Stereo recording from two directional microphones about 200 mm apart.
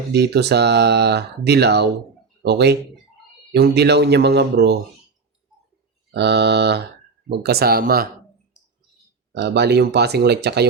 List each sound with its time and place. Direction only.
0.1 s speech: 55° right (ahead or behind)
6.1 s speech: 55° right (ahead or behind)
9.3 s speech: 55° right (ahead or behind)